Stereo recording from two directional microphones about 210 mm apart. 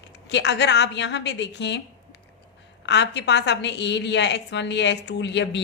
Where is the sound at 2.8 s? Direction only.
55° left (ahead or behind).